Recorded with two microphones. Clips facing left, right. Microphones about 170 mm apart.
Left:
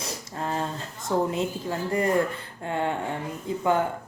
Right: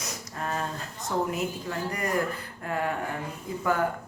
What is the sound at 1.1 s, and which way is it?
Speech, 25° left (ahead or behind).